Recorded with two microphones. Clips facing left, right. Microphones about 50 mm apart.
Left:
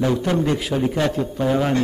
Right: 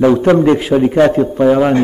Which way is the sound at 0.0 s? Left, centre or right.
Right.